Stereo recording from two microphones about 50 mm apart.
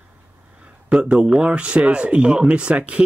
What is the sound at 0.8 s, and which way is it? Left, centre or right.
Speech, centre.